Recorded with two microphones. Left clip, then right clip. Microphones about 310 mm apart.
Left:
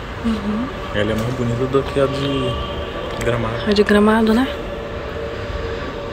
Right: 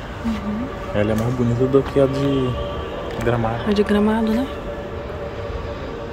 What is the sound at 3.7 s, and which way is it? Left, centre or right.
Speech, centre.